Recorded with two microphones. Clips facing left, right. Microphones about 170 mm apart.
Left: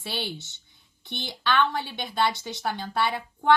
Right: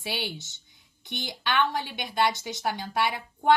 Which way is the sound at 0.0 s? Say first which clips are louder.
Even; 15° right (ahead or behind).